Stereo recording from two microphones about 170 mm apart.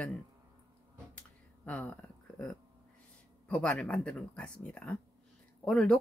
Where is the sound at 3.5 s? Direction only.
5° left (ahead or behind).